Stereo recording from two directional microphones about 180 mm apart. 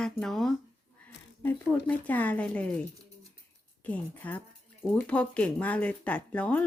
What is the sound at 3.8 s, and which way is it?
Speech, 10° left (ahead or behind).